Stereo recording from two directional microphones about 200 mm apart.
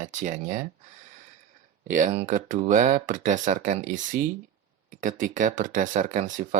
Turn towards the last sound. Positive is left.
turn(degrees=-40)  # may be behind; listen again after turning